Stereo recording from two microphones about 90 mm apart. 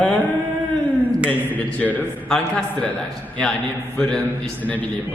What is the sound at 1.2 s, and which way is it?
A man's voice, 15° left (ahead or behind).